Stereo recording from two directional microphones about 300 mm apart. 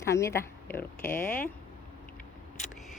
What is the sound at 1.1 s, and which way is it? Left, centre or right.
Speech, left.